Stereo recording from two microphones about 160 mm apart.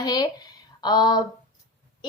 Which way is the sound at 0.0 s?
25° left (ahead or behind).